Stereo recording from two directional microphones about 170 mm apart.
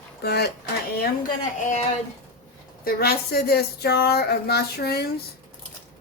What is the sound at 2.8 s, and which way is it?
Speech, 65° left (ahead or behind).